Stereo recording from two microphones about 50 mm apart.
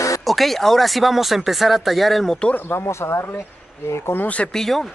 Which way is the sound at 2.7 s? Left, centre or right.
Left.